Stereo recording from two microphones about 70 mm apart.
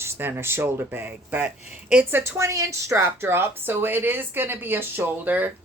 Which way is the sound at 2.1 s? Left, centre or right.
Right.